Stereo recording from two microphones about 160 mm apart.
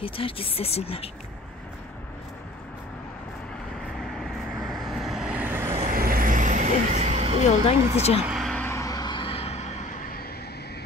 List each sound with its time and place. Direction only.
0.0 s speech: 35° left (ahead or behind)
3.9 s vehicle: centre (ahead or behind); by 5.8 s 15° right (ahead or behind)
5.9 s vehicle: 65° right (ahead or behind); by 7.3 s 45° right (ahead or behind)
7.6 s speech: 40° left (ahead or behind)
8.3 s a sound: 5° left (ahead or behind)
8.6 s a sound: 20° left (ahead or behind); by 10.2 s 55° left (ahead or behind)